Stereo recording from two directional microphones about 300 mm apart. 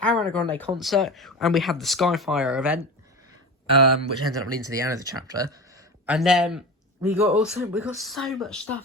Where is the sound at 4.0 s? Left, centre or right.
Right.